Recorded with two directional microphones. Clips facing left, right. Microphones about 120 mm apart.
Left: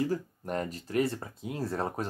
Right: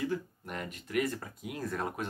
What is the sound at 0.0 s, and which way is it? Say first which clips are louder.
Speech: left 3 dB; 35° left (ahead or behind).